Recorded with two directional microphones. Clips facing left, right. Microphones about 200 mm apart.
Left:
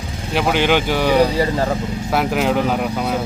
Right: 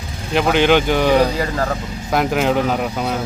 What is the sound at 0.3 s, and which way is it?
Speech, 5° left (ahead or behind).